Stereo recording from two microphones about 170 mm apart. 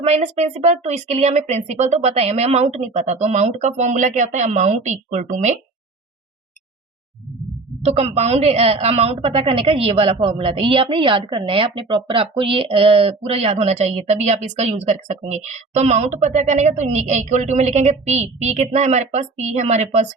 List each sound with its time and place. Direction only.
0.0 s speech: 40° right (ahead or behind)
7.8 s a woman's voice: 35° right (ahead or behind)